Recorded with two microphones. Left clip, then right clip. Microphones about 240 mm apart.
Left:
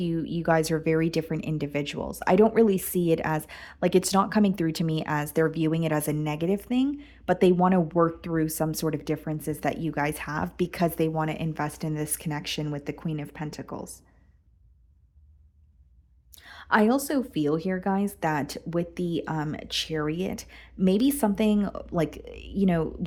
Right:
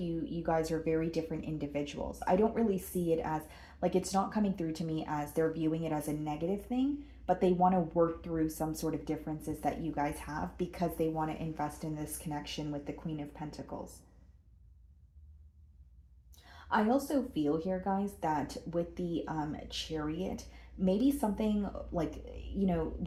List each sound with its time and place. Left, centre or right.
0.0 s speech: left
16.3 s speech: left